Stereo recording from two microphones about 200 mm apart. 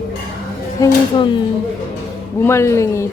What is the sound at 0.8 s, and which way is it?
Speech, 25° left (ahead or behind).